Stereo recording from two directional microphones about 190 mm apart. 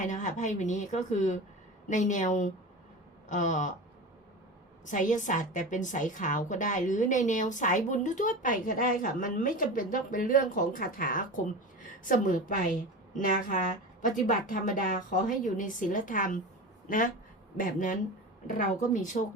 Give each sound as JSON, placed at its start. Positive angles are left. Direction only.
{"t": 0.0, "sound": "speech", "side_deg": 40}
{"t": 4.9, "sound": "a woman's voice", "side_deg": 40}
{"t": 17.6, "sound": "a woman's voice", "side_deg": 45}